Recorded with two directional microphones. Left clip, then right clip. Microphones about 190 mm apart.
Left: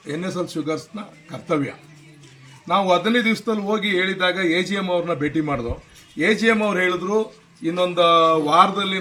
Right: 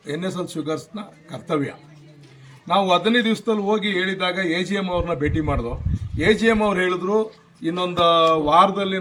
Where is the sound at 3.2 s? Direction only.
25° right (ahead or behind).